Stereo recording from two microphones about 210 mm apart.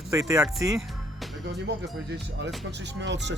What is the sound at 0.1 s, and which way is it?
Speech, 15° right (ahead or behind).